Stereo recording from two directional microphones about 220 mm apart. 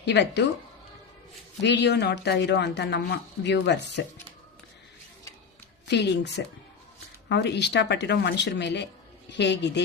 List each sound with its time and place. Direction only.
0.0 s speech: 50° left (ahead or behind)
1.6 s speech: 50° left (ahead or behind)
5.9 s speech: 50° left (ahead or behind)